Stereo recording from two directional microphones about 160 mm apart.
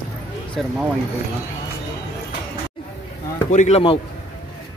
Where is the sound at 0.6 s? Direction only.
Centre (ahead or behind).